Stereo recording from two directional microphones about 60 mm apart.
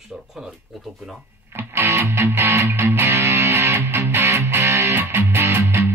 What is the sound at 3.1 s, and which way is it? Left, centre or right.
Music, right.